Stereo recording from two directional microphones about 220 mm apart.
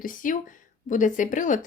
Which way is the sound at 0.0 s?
35° left (ahead or behind).